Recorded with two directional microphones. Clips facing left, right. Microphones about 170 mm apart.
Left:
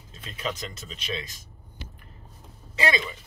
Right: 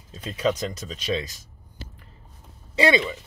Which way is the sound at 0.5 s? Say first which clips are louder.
Right 8 dB; 40° right (ahead or behind).